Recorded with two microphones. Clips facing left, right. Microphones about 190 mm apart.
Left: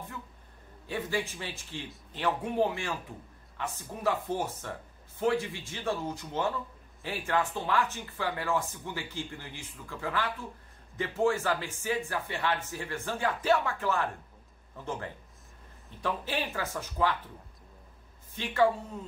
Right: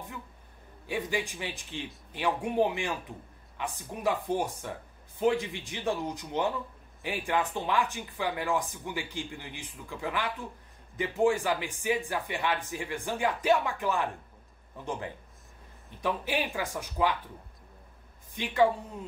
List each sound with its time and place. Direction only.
0.8 s speech: 15° right (ahead or behind)
18.3 s speech: 15° right (ahead or behind)